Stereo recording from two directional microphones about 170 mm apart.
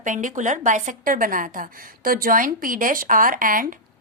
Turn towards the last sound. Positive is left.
turn(degrees=-55)  # may be behind; listen again after turning